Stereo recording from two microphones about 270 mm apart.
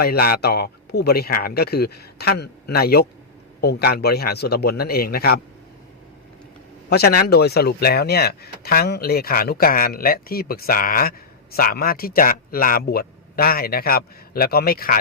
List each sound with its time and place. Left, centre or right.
0.0 s speech: left
6.9 s speech: left